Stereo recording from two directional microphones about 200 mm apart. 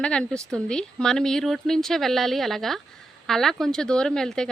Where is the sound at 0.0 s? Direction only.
5° left (ahead or behind).